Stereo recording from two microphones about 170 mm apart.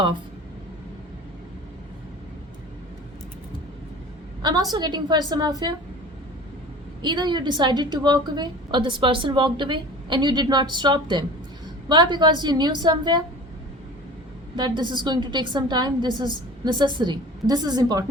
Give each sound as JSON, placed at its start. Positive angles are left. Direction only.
{"t": 4.4, "sound": "a woman's voice", "side_deg": -25}
{"t": 7.0, "sound": "a woman's voice", "side_deg": -25}
{"t": 14.5, "sound": "a woman's voice", "side_deg": -25}